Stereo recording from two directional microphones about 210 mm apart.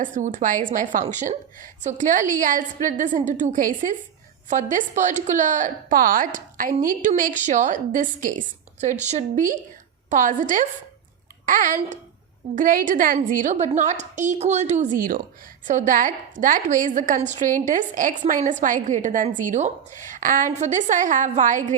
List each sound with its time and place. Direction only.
0.0 s a woman's voice: 35° right (ahead or behind)